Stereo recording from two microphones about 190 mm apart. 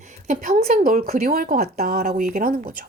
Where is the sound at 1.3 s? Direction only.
50° right (ahead or behind).